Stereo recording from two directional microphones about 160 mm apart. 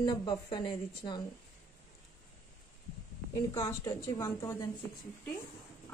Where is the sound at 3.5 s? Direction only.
25° left (ahead or behind).